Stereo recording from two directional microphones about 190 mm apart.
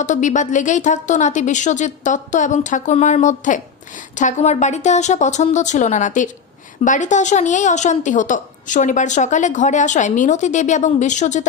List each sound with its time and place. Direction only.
0.0 s a woman's voice: 40° left (ahead or behind)